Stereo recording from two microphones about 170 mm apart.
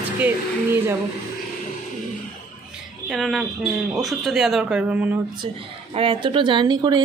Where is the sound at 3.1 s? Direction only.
Centre (ahead or behind).